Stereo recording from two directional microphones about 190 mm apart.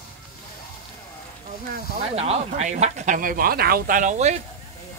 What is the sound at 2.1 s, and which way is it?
Speech, 35° right (ahead or behind).